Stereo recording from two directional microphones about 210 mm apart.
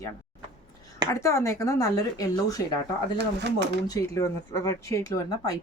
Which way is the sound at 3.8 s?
15° left (ahead or behind).